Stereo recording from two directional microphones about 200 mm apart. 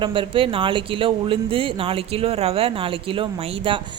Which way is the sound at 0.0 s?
25° right (ahead or behind).